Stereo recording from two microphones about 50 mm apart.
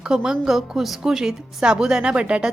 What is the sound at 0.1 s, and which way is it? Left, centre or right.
A woman's voice, centre.